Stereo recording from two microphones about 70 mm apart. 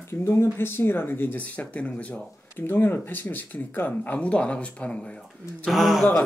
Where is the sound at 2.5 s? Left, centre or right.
Left.